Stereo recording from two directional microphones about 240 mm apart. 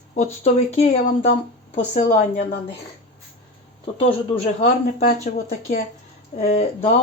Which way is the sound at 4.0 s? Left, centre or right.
Left.